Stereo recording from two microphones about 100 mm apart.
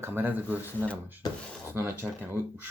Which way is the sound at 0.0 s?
20° right (ahead or behind).